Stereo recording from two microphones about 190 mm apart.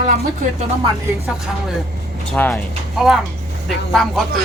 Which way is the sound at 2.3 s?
10° left (ahead or behind).